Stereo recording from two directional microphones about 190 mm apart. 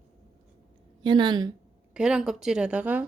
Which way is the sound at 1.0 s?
25° right (ahead or behind).